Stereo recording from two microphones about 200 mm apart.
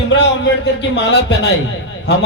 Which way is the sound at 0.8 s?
60° left (ahead or behind).